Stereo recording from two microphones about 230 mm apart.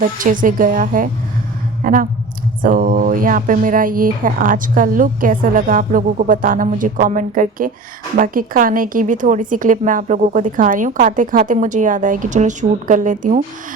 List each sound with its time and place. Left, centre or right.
0.0 s a woman's voice: right